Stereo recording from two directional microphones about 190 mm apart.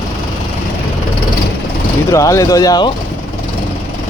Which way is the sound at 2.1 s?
15° left (ahead or behind).